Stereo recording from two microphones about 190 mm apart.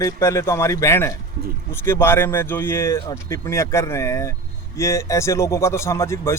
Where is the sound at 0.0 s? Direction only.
15° left (ahead or behind).